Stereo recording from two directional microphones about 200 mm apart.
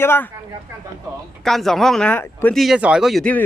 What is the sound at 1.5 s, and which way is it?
Speech, centre (ahead or behind).